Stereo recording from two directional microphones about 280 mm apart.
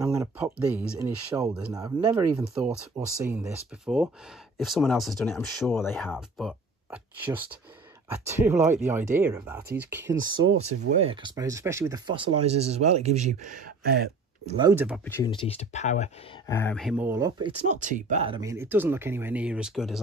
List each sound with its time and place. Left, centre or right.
0.0 s a sound: centre
0.9 s speech: centre
14.7 s speech: centre
15.2 s speech: centre
16.4 s speech: centre
17.6 s speech: right; by 20.0 s centre